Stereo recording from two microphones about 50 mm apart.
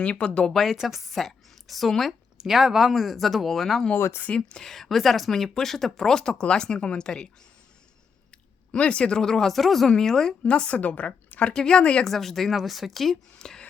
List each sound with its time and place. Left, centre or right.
0.0 s speech: left
0.4 s a woman's voice: centre
3.9 s speech: left
4.4 s speech: centre
8.7 s speech: left
10.4 s speech: left
11.5 s speech: centre
12.0 s a woman's voice: centre